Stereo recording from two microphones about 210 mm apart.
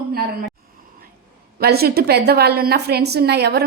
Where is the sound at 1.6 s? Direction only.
50° right (ahead or behind).